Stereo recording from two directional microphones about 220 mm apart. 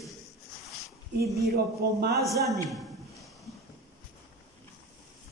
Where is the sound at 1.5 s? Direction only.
45° right (ahead or behind).